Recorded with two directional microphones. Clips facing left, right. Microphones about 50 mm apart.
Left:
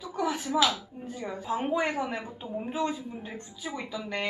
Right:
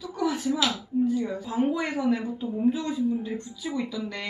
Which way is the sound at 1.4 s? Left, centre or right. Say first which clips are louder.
Right 2 dB; left.